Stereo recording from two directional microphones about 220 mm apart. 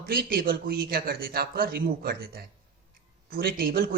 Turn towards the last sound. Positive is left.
turn(degrees=-45)  # may be behind; listen again after turning